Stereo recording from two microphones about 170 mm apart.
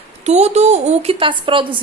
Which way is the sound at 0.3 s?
40° right (ahead or behind).